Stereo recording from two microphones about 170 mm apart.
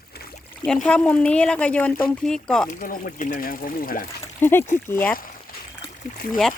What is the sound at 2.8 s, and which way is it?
Speech, 55° left (ahead or behind).